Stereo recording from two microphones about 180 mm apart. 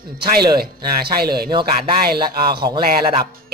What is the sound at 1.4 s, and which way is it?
Speech, 25° right (ahead or behind).